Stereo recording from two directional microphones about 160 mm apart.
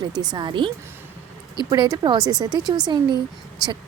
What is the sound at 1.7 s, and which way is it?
Speech, 30° right (ahead or behind).